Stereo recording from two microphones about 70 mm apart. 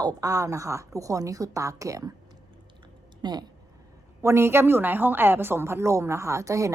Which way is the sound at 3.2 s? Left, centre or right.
Right.